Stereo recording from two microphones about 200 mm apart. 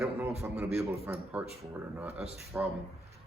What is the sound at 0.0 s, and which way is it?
A man's voice, 10° right (ahead or behind).